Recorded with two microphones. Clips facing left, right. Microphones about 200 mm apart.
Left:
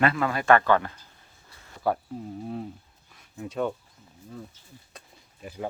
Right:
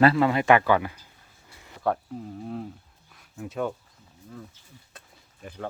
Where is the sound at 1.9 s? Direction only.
5° left (ahead or behind).